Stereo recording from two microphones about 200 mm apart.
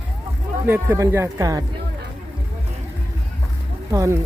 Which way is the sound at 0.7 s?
10° right (ahead or behind).